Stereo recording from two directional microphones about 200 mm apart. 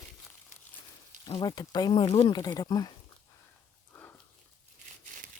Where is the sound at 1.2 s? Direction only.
20° left (ahead or behind).